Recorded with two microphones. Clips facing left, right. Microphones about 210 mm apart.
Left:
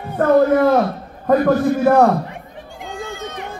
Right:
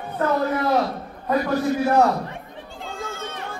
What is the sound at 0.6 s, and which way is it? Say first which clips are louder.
A man's voice: left 7 dB; 55° left (ahead or behind).